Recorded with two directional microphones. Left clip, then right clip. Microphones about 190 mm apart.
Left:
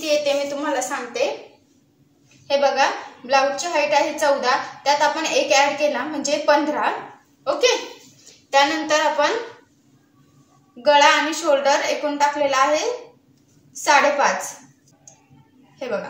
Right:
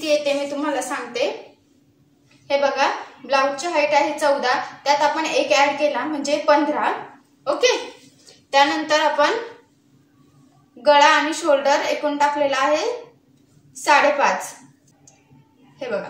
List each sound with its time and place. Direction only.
0.0 s a woman's voice: 5° right (ahead or behind)
2.4 s a woman's voice: centre (ahead or behind)
8.5 s a woman's voice: 5° right (ahead or behind)
10.8 s a woman's voice: 5° right (ahead or behind)